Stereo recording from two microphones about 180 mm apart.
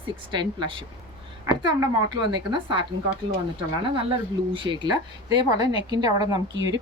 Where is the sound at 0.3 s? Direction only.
25° right (ahead or behind).